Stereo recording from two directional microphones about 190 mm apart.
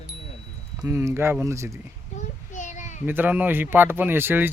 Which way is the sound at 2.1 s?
40° left (ahead or behind).